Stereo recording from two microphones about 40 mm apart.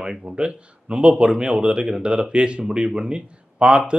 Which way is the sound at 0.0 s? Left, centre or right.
Centre.